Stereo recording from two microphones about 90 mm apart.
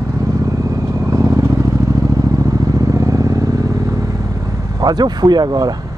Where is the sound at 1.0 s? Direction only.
40° right (ahead or behind).